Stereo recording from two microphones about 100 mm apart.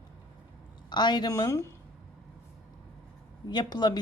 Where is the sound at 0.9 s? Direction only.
50° left (ahead or behind).